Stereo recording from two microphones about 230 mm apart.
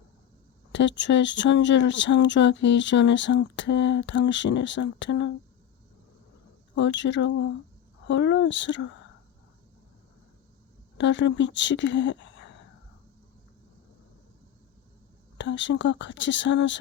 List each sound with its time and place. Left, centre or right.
0.7 s speech: left
6.7 s speech: left
10.9 s speech: left
15.4 s speech: left